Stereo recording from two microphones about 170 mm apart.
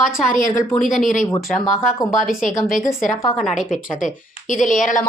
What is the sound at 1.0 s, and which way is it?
Speech, 50° left (ahead or behind).